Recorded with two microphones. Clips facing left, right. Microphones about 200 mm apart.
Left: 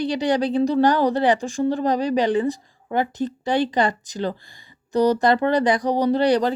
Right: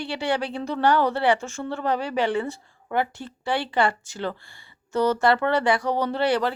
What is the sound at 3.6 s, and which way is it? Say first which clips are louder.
Speech: left 3 dB; 40° left (ahead or behind).